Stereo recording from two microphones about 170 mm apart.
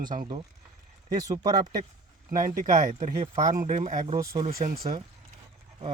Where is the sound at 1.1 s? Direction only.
25° right (ahead or behind).